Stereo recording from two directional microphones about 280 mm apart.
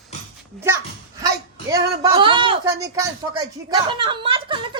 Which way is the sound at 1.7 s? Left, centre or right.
Centre.